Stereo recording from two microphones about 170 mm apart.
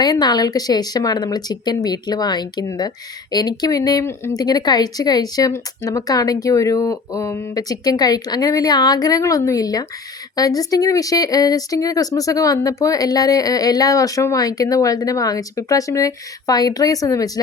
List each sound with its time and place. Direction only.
0.0 s speech: 25° left (ahead or behind)